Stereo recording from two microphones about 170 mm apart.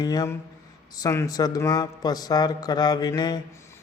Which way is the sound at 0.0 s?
20° left (ahead or behind).